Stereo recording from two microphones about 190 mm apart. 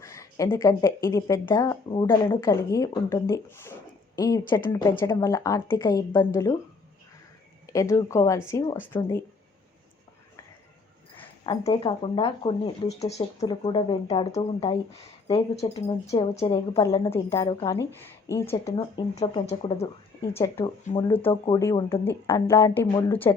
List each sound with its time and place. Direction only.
0.0 s speech: 15° left (ahead or behind)
7.7 s speech: 15° left (ahead or behind)
11.2 s a woman's voice: 30° left (ahead or behind)
17.7 s speech: 15° left (ahead or behind)
19.1 s a woman's voice: 35° left (ahead or behind)
20.3 s speech: 15° left (ahead or behind)
20.9 s speech: 30° left (ahead or behind)
21.5 s speech: 15° left (ahead or behind)